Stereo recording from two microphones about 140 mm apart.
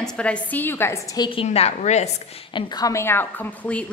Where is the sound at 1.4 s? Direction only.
50° left (ahead or behind).